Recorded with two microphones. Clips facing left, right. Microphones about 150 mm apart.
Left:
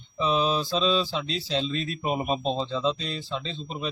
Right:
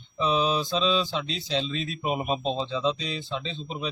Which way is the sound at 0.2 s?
Centre (ahead or behind).